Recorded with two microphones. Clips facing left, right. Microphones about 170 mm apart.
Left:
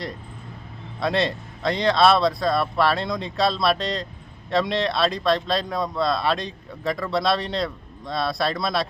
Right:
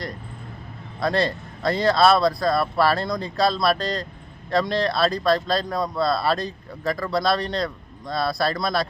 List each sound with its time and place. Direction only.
0.9 s speech: centre (ahead or behind)